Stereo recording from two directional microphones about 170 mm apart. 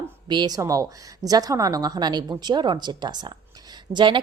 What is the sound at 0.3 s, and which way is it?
A woman's voice, 25° right (ahead or behind).